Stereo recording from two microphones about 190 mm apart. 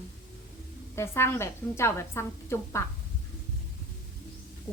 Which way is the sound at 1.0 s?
15° left (ahead or behind).